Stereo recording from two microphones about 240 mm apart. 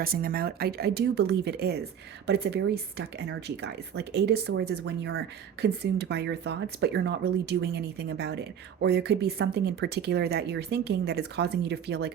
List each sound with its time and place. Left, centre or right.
0.0 s speech: right